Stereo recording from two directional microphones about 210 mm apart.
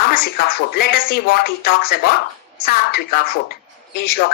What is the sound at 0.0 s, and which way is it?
Speech, 50° left (ahead or behind).